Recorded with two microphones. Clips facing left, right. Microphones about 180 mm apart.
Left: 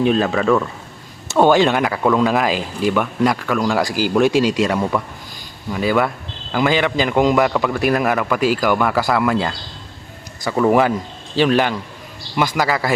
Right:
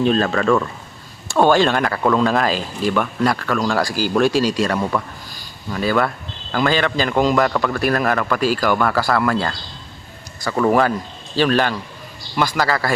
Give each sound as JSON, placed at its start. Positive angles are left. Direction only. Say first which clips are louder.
{"t": 0.0, "sound": "a man's voice", "louder": "left 1 dB", "side_deg": 15}
{"t": 1.3, "sound": "a man's voice", "louder": "left 1 dB", "side_deg": 15}
{"t": 2.0, "sound": "speech", "louder": "even", "side_deg": 5}
{"t": 2.2, "sound": "a man's voice", "louder": "left 1 dB", "side_deg": 15}
{"t": 4.8, "sound": "a man's voice", "louder": "left 1 dB", "side_deg": 5}